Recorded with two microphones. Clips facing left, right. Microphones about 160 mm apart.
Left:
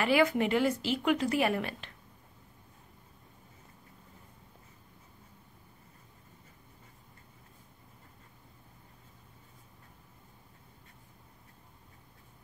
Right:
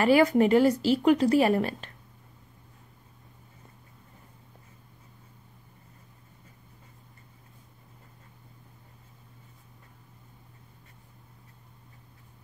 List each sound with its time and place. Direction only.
0.0 s a woman's voice: 40° right (ahead or behind)